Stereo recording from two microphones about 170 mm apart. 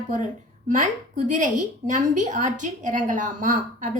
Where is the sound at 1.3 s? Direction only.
45° right (ahead or behind).